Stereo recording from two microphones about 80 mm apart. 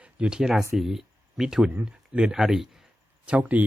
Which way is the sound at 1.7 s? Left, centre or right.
Right.